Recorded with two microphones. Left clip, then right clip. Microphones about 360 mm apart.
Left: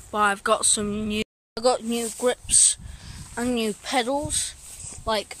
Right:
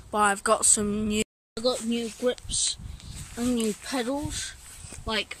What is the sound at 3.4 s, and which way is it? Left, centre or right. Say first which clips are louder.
Speech: left 3 dB; centre.